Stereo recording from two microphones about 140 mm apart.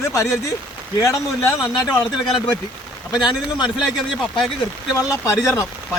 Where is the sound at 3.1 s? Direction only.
30° left (ahead or behind).